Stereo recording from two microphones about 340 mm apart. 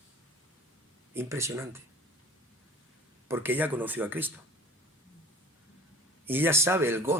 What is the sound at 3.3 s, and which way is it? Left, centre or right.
Speech, centre.